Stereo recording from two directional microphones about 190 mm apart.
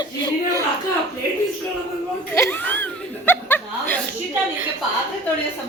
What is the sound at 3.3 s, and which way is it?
Chuckle, 10° left (ahead or behind).